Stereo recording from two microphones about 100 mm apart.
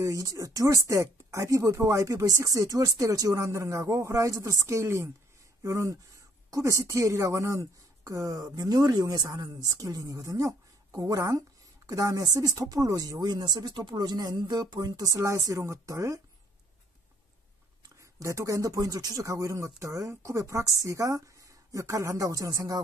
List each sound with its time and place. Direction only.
0.0 s speech: 30° right (ahead or behind)
15.1 s speech: 30° right (ahead or behind)
17.8 s speech: 30° right (ahead or behind)